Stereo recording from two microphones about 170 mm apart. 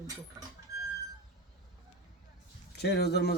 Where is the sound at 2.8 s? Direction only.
75° left (ahead or behind).